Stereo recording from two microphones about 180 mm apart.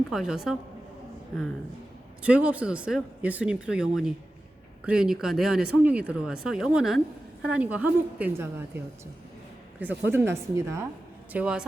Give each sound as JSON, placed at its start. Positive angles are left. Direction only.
{"t": 0.1, "sound": "speech", "side_deg": 0}
{"t": 2.2, "sound": "a woman's voice", "side_deg": -5}
{"t": 9.8, "sound": "a woman's voice", "side_deg": -10}